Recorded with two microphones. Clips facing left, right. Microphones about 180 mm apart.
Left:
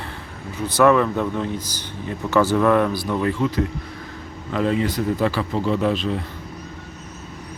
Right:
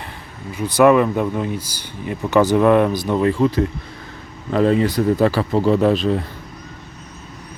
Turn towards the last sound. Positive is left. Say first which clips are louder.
# right 5 dB
turn(degrees=-40)  # may be behind; listen again after turning